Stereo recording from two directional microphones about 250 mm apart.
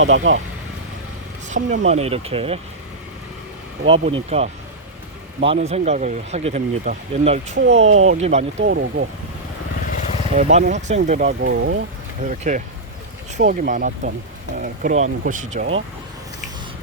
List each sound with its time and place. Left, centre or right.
0.0 s speech: right
1.5 s speech: right
3.8 s speech: right
7.9 s speech: right
8.2 s speech: right
8.6 s speech: right
9.8 s vehicle: left
10.3 s speech: right
12.3 s speech: right